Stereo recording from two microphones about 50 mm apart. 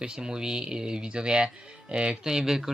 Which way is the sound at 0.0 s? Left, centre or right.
Centre.